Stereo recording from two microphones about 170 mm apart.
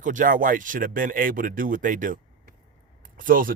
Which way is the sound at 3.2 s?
55° right (ahead or behind).